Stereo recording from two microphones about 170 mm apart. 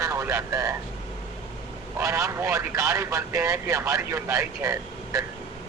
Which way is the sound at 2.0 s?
20° right (ahead or behind).